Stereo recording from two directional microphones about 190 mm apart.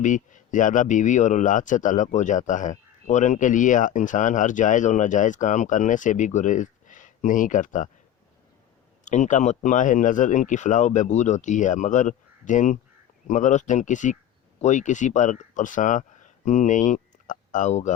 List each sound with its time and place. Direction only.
0.0 s speech: 40° left (ahead or behind)
9.0 s speech: 40° left (ahead or behind)